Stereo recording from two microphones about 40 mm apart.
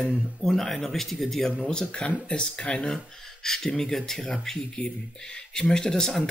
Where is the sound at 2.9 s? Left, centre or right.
Centre.